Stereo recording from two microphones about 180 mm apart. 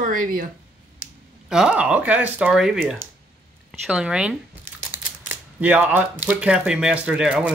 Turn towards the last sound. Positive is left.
turn(degrees=-5)  # may be behind; listen again after turning